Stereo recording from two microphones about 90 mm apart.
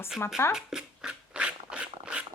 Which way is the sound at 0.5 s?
10° right (ahead or behind).